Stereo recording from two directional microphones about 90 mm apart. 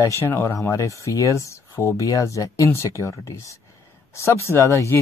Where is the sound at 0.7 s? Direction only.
35° left (ahead or behind).